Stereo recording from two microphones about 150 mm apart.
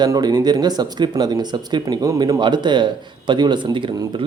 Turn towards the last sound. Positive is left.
turn(degrees=-35)  # may be behind; listen again after turning